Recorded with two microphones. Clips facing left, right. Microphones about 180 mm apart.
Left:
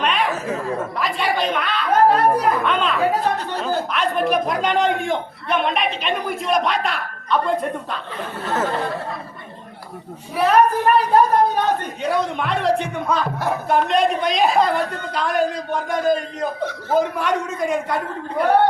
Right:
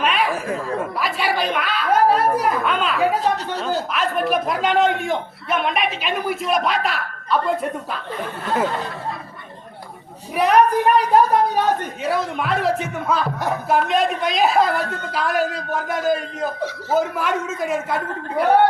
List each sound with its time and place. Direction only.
0.0 s a sound: 5° right (ahead or behind)
0.8 s a man's voice: 5° right (ahead or behind)
10.3 s a child's voice: 15° right (ahead or behind)
12.0 s a man's voice: 5° right (ahead or behind)